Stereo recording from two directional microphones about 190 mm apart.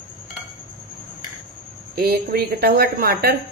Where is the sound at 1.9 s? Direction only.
55° right (ahead or behind).